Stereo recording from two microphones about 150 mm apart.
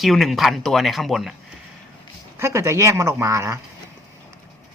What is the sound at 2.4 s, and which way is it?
Speech, 20° right (ahead or behind).